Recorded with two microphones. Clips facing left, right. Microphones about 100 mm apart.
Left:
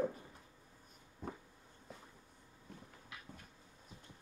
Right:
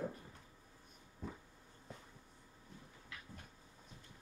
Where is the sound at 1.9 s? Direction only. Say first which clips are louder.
Even; centre (ahead or behind).